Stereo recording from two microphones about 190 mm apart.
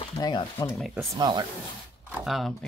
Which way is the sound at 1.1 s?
20° right (ahead or behind).